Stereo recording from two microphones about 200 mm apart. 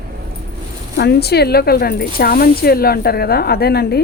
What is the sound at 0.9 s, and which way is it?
Speech, 55° left (ahead or behind).